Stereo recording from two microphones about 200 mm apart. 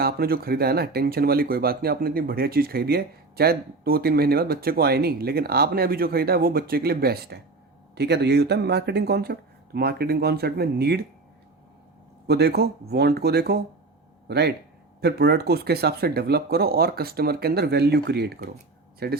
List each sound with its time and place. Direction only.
0.0 s speech: 50° right (ahead or behind)
12.3 s speech: 55° right (ahead or behind)